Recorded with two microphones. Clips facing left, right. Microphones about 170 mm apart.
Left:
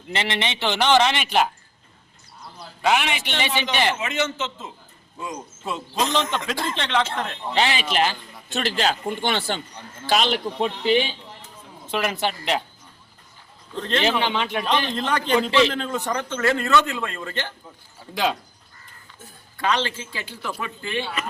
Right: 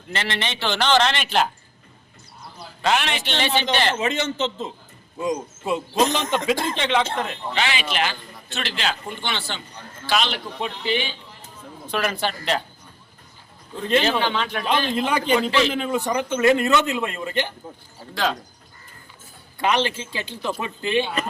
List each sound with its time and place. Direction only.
0.1 s a man's voice: 20° left (ahead or behind)
2.8 s a man's voice: 10° left (ahead or behind)
3.9 s a man's voice: 30° right (ahead or behind)
5.2 s a man's voice: 15° right (ahead or behind)
6.5 s speech: 5° right (ahead or behind)
7.5 s a man's voice: 35° left (ahead or behind)
11.9 s a man's voice: 20° left (ahead or behind)
13.7 s a man's voice: 10° right (ahead or behind)
14.2 s a man's voice: 15° left (ahead or behind)
14.7 s a man's voice: 10° right (ahead or behind)
18.1 s a man's voice: 15° left (ahead or behind)
19.5 s a man's voice: 20° right (ahead or behind)